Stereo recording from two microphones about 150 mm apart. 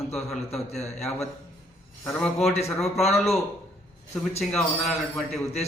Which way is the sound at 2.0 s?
5° left (ahead or behind).